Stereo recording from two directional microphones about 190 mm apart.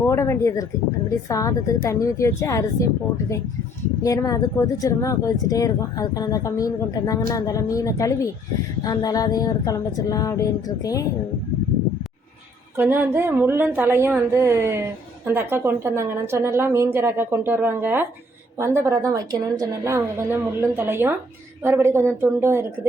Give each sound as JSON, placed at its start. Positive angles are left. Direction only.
{"t": 0.1, "sound": "speech", "side_deg": 15}
{"t": 4.0, "sound": "speech", "side_deg": 20}
{"t": 12.7, "sound": "speech", "side_deg": -10}